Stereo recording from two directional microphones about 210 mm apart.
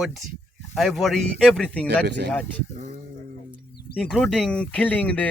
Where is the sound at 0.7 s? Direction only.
Centre (ahead or behind).